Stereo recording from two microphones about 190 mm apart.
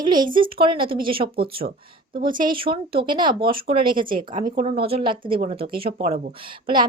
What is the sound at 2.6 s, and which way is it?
A woman's voice, 25° right (ahead or behind).